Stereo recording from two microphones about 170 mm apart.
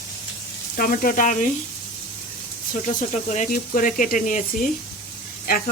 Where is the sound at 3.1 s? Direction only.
45° left (ahead or behind).